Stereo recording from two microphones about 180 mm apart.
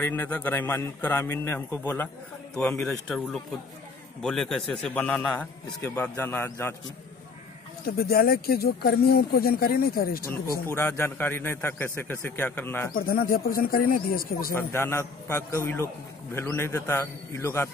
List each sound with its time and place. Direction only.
0.0 s a man's voice: 10° left (ahead or behind)
7.8 s speech: 55° left (ahead or behind)
10.7 s a man's voice: 15° left (ahead or behind)
12.9 s a man's voice: 55° left (ahead or behind)
14.5 s a man's voice: 15° left (ahead or behind)